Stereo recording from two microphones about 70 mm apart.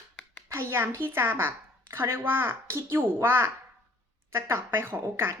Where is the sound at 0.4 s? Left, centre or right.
Right.